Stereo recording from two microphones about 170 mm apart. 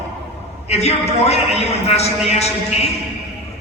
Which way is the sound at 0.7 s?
40° left (ahead or behind).